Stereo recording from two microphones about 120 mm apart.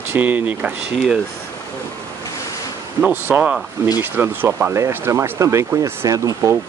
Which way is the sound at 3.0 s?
15° right (ahead or behind).